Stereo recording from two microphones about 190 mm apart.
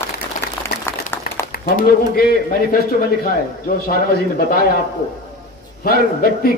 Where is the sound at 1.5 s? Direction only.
50° left (ahead or behind).